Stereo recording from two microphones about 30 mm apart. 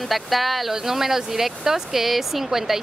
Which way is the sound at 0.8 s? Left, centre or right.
Centre.